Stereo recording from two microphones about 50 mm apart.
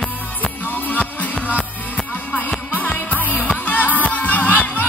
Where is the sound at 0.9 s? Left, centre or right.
Left.